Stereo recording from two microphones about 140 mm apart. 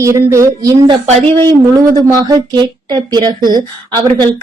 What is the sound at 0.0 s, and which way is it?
Speech, 20° right (ahead or behind).